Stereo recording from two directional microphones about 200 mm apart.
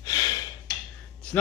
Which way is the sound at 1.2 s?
5° left (ahead or behind).